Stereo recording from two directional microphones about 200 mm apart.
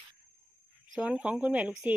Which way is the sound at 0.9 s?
5° right (ahead or behind).